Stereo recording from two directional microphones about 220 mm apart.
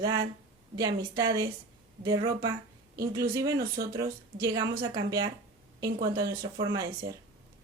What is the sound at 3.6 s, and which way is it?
Speech, 45° right (ahead or behind).